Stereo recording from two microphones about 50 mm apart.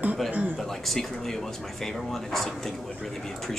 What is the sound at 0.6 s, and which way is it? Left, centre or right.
Speech, centre.